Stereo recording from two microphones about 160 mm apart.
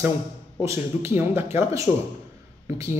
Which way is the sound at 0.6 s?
15° right (ahead or behind).